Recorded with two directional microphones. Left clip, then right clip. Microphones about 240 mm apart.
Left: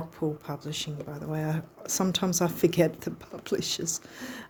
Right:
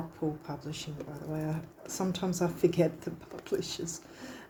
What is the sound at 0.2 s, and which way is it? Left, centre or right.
Speech, left.